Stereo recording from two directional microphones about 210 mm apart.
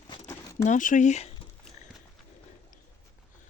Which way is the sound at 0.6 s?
35° left (ahead or behind).